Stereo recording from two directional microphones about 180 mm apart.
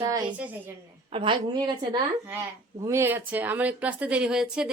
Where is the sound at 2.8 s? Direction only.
15° right (ahead or behind).